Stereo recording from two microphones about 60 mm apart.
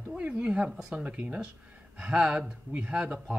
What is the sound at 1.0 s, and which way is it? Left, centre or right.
Speech, right.